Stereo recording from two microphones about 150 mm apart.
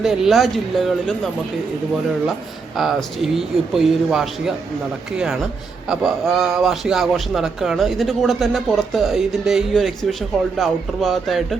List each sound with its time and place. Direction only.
0.0 s a man's voice: centre (ahead or behind)
2.7 s a man's voice: centre (ahead or behind)